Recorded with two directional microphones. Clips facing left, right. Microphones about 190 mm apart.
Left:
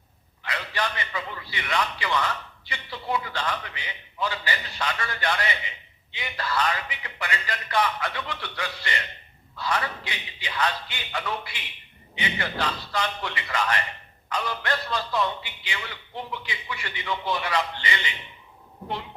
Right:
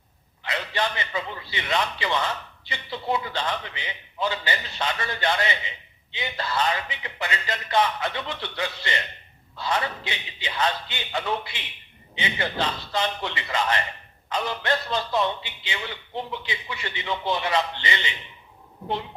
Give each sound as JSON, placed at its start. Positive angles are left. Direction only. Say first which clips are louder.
{"t": 0.4, "sound": "a man's voice", "louder": "right 2 dB", "side_deg": -25}